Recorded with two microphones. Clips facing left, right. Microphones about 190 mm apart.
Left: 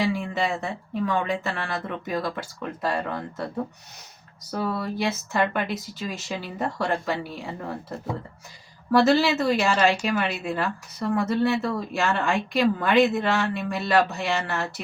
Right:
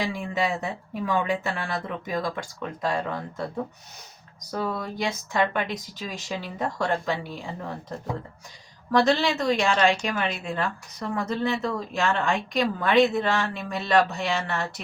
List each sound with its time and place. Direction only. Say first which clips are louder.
0.0 s a woman's voice: left 2 dB; centre (ahead or behind)
4.5 s a woman's voice: left 2 dB; 5° left (ahead or behind)